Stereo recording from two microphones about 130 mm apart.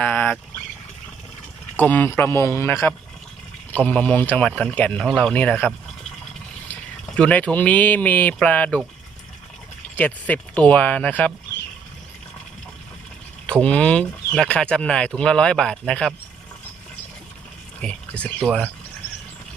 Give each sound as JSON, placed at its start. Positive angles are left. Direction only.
{"t": 0.0, "sound": "a sound", "side_deg": 10}
{"t": 1.7, "sound": "speech", "side_deg": 15}
{"t": 7.2, "sound": "speech", "side_deg": 10}
{"t": 9.9, "sound": "speech", "side_deg": 10}
{"t": 13.5, "sound": "speech", "side_deg": 10}
{"t": 17.7, "sound": "a sound", "side_deg": 10}
{"t": 18.4, "sound": "speech", "side_deg": 10}